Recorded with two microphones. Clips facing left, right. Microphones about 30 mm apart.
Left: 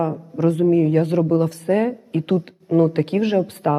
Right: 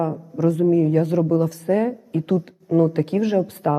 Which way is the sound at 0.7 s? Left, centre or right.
Left.